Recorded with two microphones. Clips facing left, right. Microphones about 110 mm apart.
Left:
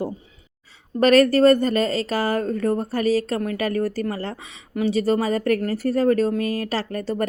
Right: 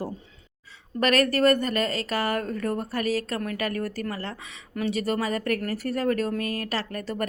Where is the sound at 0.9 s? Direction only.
35° left (ahead or behind).